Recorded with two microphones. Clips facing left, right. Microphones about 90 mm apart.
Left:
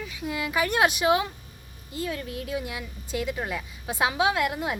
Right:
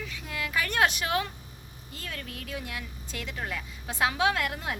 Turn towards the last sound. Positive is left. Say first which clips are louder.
# left 3 dB
turn(degrees=10)  # may be behind; listen again after turning